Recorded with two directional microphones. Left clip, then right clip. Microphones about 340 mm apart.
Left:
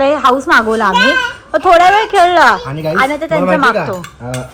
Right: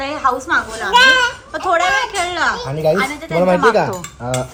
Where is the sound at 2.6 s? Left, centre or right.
Right.